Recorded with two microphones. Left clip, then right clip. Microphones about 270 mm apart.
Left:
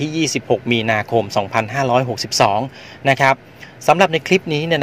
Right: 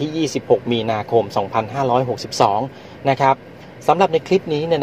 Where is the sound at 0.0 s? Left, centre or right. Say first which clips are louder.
Left 1 dB; left.